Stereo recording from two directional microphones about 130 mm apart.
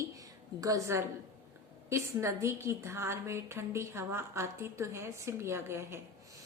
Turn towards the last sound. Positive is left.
turn(degrees=-20)  # may be behind; listen again after turning